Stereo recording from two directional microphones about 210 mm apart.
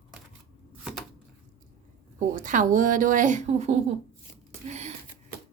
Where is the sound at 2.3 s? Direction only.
40° right (ahead or behind).